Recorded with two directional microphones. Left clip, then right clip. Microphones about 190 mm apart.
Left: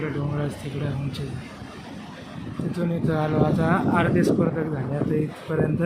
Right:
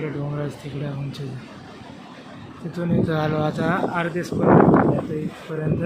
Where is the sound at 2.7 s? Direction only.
Centre (ahead or behind).